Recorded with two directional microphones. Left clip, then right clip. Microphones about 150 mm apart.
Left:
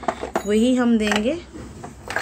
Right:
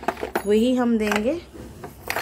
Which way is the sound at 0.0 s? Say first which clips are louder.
Left 1 dB; 10° right (ahead or behind).